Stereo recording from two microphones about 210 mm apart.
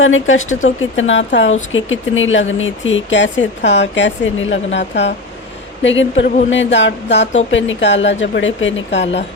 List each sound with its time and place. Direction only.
0.0 s a woman's voice: 70° left (ahead or behind)